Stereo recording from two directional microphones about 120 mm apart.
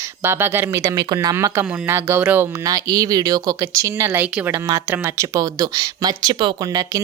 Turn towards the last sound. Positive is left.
turn(degrees=-35)  # may be behind; listen again after turning